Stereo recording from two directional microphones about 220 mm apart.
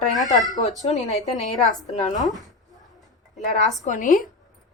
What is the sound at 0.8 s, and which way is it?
A woman's voice, 30° left (ahead or behind).